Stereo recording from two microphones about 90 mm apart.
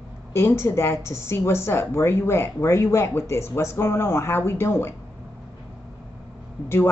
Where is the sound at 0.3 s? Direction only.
30° left (ahead or behind).